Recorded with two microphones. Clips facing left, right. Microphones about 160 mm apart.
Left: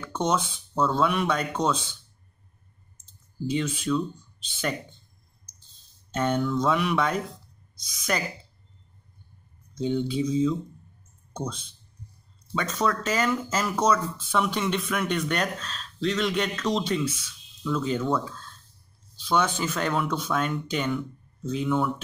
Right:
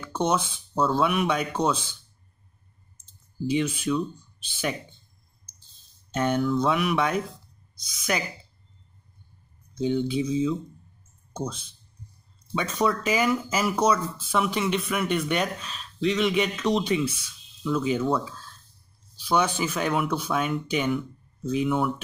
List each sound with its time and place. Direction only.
0.0 s speech: 10° right (ahead or behind)
3.4 s speech: 10° right (ahead or behind)
6.1 s speech: 10° right (ahead or behind)
9.8 s speech: 5° right (ahead or behind)